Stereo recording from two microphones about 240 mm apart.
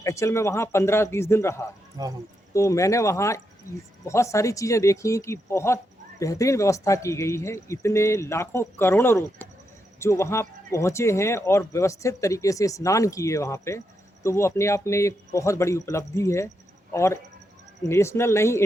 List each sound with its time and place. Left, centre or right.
0.0 s speech: centre
2.0 s speech: centre
2.5 s speech: centre